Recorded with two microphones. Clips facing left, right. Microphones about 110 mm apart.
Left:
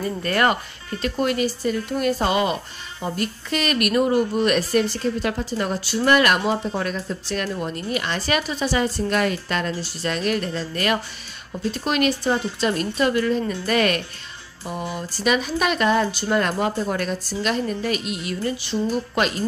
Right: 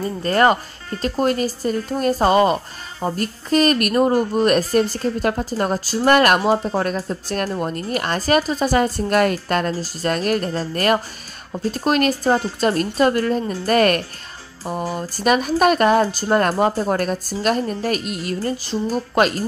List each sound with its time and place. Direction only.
0.0 s speech: 30° right (ahead or behind)